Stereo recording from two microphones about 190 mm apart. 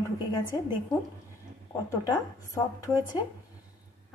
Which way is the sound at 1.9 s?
15° left (ahead or behind).